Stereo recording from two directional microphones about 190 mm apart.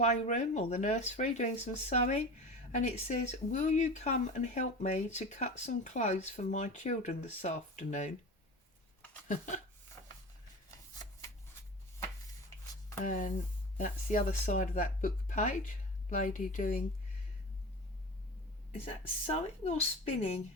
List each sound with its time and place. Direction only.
0.0 s speech: 40° left (ahead or behind)
13.1 s speech: 45° left (ahead or behind)
19.2 s speech: 35° left (ahead or behind)